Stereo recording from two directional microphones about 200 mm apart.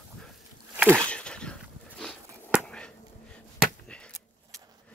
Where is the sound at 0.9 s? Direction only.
5° left (ahead or behind).